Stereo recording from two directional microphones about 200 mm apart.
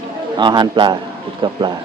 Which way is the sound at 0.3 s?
20° right (ahead or behind).